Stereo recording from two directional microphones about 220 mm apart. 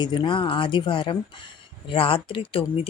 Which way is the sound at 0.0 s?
20° left (ahead or behind).